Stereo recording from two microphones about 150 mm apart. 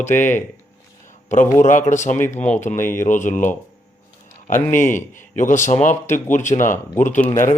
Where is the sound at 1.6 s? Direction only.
55° left (ahead or behind).